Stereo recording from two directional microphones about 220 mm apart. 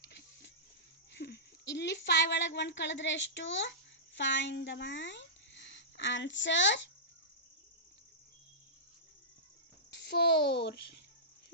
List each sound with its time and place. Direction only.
0.1 s a sound: 50° left (ahead or behind)
1.1 s speech: 50° left (ahead or behind)
9.9 s a child's voice: 50° left (ahead or behind)